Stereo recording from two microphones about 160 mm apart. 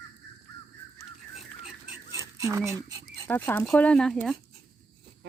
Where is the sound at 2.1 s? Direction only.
20° right (ahead or behind).